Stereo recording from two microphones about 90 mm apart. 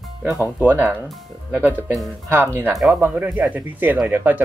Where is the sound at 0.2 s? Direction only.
20° right (ahead or behind).